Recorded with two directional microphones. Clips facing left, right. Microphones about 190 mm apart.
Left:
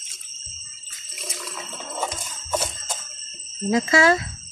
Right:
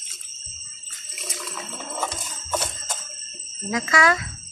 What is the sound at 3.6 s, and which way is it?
Speech, 25° left (ahead or behind).